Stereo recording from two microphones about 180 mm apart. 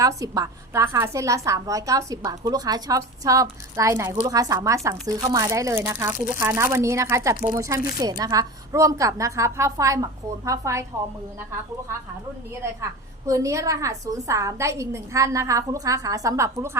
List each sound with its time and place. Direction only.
0.2 s a woman's voice: 15° right (ahead or behind)
13.2 s a woman's voice: 15° right (ahead or behind)